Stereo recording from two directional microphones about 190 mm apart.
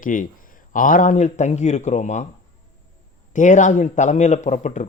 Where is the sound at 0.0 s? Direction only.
45° left (ahead or behind).